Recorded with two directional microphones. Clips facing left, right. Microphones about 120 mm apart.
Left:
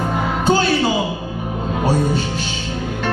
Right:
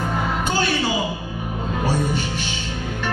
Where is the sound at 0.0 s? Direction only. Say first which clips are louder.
Left 4 dB; 25° left (ahead or behind).